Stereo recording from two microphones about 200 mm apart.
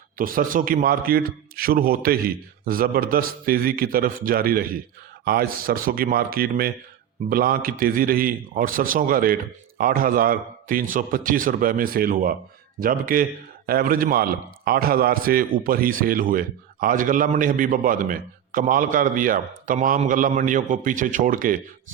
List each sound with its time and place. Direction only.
0.2 s a man's voice: 45° right (ahead or behind)